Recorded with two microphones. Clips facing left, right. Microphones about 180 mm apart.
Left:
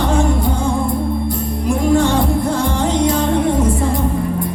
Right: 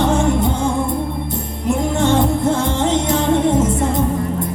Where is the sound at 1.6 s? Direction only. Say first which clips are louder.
Left 2 dB; 20° right (ahead or behind).